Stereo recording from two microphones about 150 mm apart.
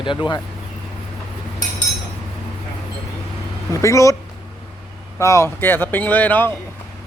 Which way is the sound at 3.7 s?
20° left (ahead or behind).